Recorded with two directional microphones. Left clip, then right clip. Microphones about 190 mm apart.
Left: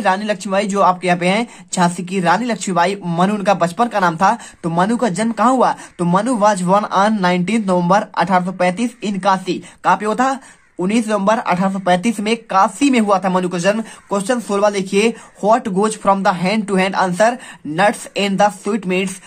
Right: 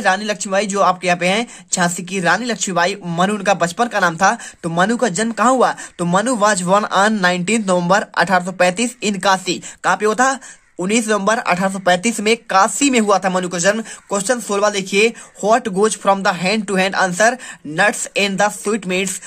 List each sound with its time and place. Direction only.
0.0 s speech: 20° right (ahead or behind)